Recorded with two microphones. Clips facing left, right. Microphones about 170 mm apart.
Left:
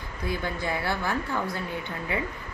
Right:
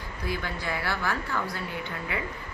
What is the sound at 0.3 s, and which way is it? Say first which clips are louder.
A woman's voice: left 2 dB; 20° left (ahead or behind).